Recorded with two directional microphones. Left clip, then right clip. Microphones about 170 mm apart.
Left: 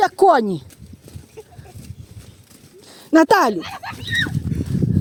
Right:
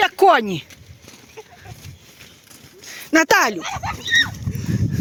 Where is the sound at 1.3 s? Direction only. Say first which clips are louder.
Even; 90° left.